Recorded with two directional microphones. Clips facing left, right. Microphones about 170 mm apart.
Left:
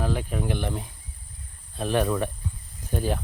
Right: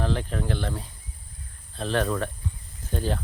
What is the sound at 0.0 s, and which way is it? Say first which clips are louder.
Speech: even; 10° left (ahead or behind).